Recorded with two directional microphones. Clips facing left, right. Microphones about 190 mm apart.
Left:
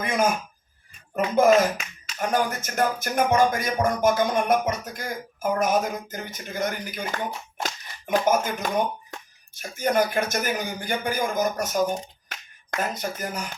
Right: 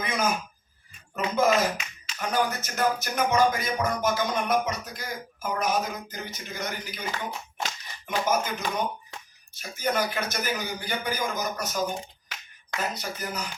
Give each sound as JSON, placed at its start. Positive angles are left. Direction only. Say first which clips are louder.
{"t": 0.0, "sound": "a sound", "louder": "left 4 dB", "side_deg": 50}
{"t": 1.1, "sound": "music", "louder": "left 5 dB", "side_deg": 50}
{"t": 7.6, "sound": "speech", "louder": "left 4 dB", "side_deg": 50}
{"t": 12.7, "sound": "music", "louder": "left 3 dB", "side_deg": 50}